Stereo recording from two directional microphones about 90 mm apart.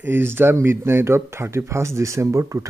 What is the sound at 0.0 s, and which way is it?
Speech, 25° right (ahead or behind).